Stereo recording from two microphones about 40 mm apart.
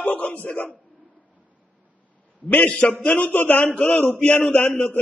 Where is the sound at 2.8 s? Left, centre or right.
Left.